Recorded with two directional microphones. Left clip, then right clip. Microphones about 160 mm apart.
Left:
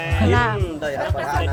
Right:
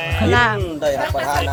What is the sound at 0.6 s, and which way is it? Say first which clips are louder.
Speech: right 5 dB; 55° right (ahead or behind).